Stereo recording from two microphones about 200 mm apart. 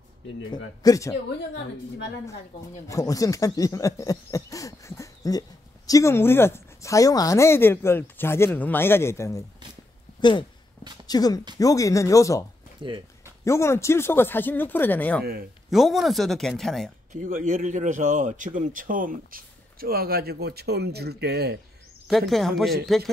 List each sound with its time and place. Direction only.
0.5 s speech: 15° left (ahead or behind)
1.6 s a woman's voice: 60° left (ahead or behind)
2.9 s speech: 15° left (ahead or behind)
11.1 s a woman's voice: 20° left (ahead or behind); by 16.9 s centre (ahead or behind)
17.1 s a man's voice: 40° right (ahead or behind)
22.3 s speech: centre (ahead or behind)